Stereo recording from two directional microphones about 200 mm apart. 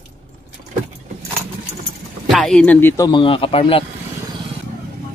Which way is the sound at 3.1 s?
25° left (ahead or behind).